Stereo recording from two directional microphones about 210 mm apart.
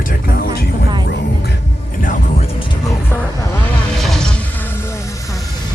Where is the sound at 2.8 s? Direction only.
15° left (ahead or behind).